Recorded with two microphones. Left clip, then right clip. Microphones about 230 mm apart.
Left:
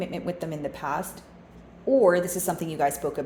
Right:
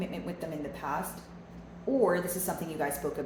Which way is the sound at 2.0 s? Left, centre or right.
Left.